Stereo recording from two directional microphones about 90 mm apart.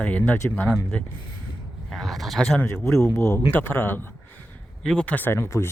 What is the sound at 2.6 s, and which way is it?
Speech, 30° left (ahead or behind).